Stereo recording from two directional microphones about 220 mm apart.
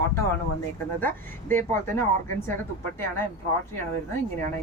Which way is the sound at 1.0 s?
10° left (ahead or behind).